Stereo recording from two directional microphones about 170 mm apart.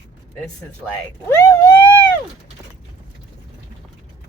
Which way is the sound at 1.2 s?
15° left (ahead or behind).